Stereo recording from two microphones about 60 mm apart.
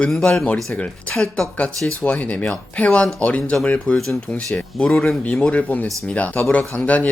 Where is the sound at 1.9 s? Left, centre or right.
Left.